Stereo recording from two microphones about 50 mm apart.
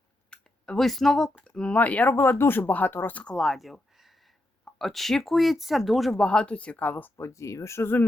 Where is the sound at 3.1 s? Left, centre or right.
Centre.